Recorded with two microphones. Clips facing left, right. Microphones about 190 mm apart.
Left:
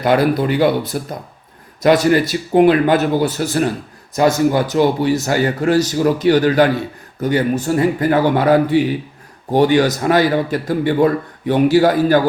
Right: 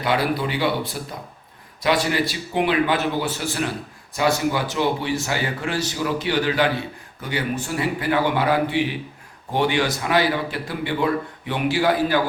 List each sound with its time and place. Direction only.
0.0 s a man's voice: 45° left (ahead or behind)